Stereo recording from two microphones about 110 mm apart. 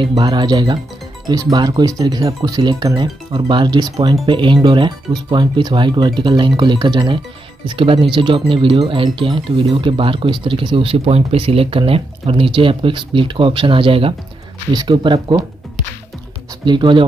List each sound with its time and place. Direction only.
0.1 s speech: 40° right (ahead or behind)
14.7 s speech: 40° right (ahead or behind)
16.6 s speech: 45° right (ahead or behind)